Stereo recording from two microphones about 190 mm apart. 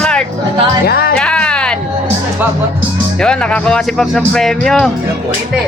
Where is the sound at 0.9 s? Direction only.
50° left (ahead or behind).